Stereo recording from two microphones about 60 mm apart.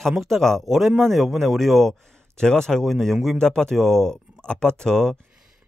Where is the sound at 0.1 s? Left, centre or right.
Centre.